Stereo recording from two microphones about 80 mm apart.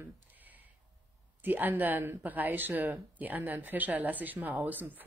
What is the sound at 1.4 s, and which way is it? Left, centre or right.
Speech, right.